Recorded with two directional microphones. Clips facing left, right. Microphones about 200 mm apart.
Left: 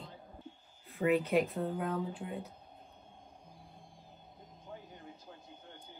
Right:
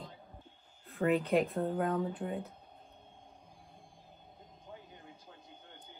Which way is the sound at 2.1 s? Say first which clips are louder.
Right 3 dB; 55° right (ahead or behind).